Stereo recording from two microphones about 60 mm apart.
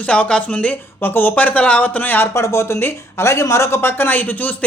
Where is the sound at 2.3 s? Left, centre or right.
Left.